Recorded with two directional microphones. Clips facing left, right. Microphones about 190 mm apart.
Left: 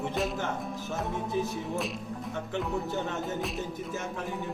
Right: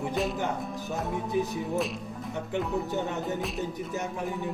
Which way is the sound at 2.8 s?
15° right (ahead or behind).